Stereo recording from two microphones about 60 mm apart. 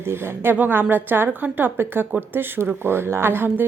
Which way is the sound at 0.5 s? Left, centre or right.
Right.